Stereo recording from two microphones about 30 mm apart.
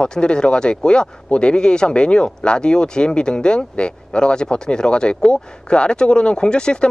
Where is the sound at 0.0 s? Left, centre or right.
Left.